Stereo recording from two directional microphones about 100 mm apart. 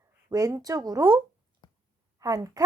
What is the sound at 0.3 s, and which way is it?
Speech, 35° right (ahead or behind).